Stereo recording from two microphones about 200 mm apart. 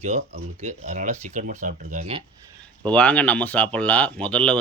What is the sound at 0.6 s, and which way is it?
Speech, 35° right (ahead or behind).